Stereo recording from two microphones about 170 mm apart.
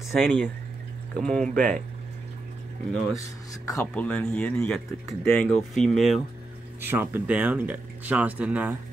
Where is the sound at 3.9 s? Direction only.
10° left (ahead or behind).